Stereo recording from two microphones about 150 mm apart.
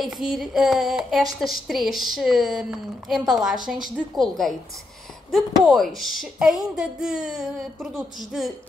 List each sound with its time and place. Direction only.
0.0 s a woman's voice: centre (ahead or behind)